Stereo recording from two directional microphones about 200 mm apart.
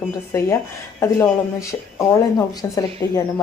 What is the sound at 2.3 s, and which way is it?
Speech, 15° left (ahead or behind).